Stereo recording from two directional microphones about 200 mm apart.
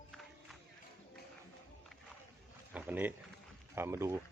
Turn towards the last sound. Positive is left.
turn(degrees=-15)  # may be behind; listen again after turning